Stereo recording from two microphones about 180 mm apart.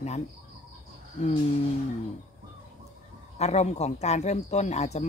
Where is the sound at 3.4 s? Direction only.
40° left (ahead or behind).